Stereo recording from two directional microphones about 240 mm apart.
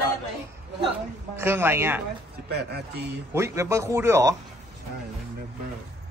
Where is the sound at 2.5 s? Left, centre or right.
Right.